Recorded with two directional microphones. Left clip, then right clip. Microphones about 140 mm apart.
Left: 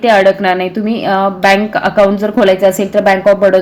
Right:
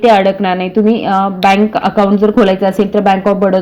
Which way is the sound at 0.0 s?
35° right (ahead or behind).